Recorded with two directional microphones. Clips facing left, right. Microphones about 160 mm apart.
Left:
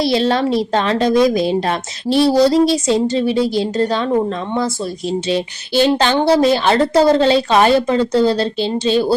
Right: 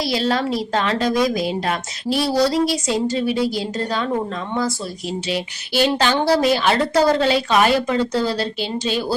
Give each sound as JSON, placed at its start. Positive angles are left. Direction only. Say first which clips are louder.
{"t": 0.0, "sound": "speech", "louder": "left 5 dB", "side_deg": 25}
{"t": 5.3, "sound": "speech", "louder": "left 4 dB", "side_deg": 25}